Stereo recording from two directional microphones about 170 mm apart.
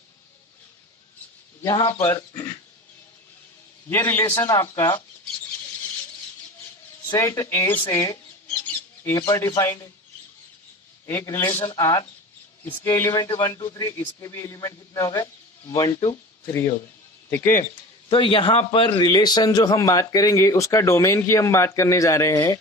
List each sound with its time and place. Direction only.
1.6 s a man's voice: 20° left (ahead or behind)
3.8 s a man's voice: 15° left (ahead or behind)
7.1 s a man's voice: 20° left (ahead or behind)
11.0 s a man's voice: 15° left (ahead or behind)
18.1 s a man's voice: 30° left (ahead or behind)